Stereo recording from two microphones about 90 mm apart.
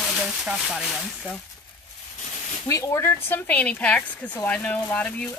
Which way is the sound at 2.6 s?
35° left (ahead or behind).